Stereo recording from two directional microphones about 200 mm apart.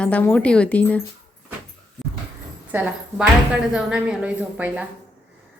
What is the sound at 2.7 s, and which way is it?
A woman's voice, 5° right (ahead or behind).